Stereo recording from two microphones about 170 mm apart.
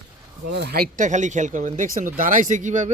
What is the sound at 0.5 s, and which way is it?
Speech, 75° right (ahead or behind).